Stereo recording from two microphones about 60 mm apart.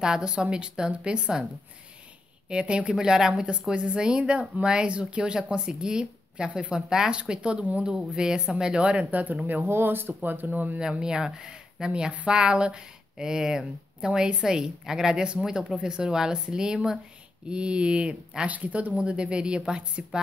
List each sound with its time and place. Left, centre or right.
0.0 s speech: centre
2.5 s speech: centre
10.8 s speech: centre